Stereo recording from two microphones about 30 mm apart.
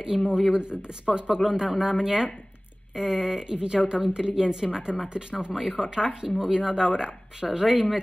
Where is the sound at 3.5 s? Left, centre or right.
Right.